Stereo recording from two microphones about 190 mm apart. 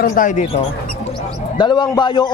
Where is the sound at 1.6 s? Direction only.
25° left (ahead or behind).